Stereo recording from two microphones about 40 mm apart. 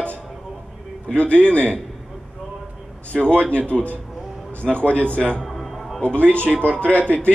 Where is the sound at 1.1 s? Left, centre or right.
Left.